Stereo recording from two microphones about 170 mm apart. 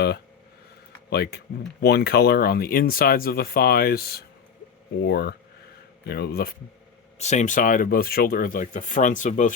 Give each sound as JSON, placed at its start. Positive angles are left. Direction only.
{"t": 1.1, "sound": "speech", "side_deg": 70}
{"t": 7.2, "sound": "speech", "side_deg": 45}